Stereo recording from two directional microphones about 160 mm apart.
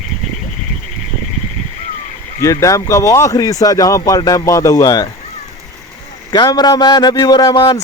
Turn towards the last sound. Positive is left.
turn(degrees=25)  # may be behind; listen again after turning